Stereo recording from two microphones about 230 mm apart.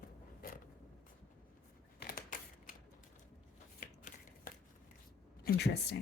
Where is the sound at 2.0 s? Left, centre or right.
Left.